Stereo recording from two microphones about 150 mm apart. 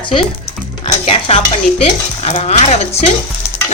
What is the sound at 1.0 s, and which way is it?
Stir, 40° left (ahead or behind).